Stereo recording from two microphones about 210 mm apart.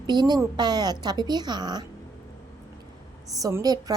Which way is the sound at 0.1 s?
20° right (ahead or behind).